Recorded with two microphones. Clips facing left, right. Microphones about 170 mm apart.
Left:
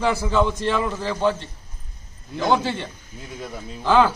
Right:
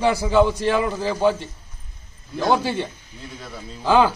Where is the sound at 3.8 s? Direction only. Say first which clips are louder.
Even; 15° right (ahead or behind).